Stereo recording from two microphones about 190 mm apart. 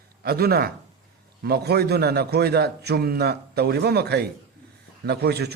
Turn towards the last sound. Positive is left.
turn(degrees=-60)  # may be behind; listen again after turning